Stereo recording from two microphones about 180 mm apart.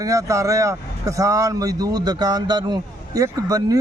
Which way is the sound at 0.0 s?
20° right (ahead or behind).